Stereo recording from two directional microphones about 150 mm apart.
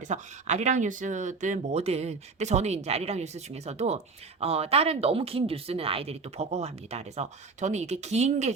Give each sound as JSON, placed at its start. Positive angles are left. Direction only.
{"t": 0.1, "sound": "speech", "side_deg": -50}